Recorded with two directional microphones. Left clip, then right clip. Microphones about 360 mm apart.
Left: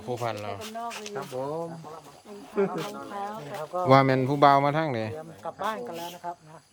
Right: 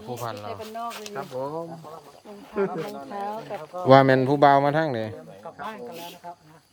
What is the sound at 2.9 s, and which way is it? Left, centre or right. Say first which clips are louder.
Speech: right 3 dB; right.